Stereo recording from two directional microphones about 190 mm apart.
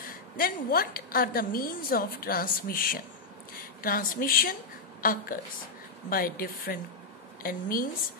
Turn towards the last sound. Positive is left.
turn(degrees=50)  # may be behind; listen again after turning